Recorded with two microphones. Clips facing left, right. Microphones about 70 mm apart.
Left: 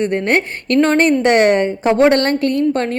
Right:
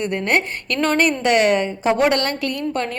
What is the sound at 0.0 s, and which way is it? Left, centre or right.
A woman's voice, left.